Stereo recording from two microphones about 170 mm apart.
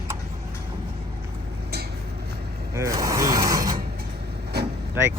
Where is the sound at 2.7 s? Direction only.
20° right (ahead or behind).